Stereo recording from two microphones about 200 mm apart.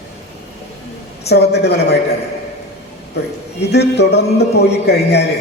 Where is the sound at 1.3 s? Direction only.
55° left (ahead or behind).